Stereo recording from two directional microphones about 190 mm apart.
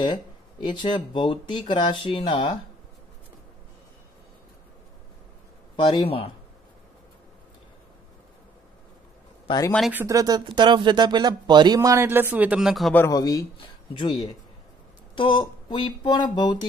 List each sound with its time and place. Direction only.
0.0 s speech: 25° left (ahead or behind)
5.8 s speech: 25° left (ahead or behind)
9.7 s speech: centre (ahead or behind)
9.9 s speech: 15° right (ahead or behind); by 13.0 s centre (ahead or behind)
13.0 s speech: 20° left (ahead or behind)